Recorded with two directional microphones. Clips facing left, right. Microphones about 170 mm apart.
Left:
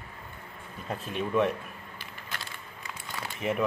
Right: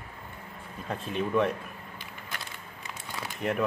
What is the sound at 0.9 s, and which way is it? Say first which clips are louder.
Speech: right 1 dB; centre (ahead or behind).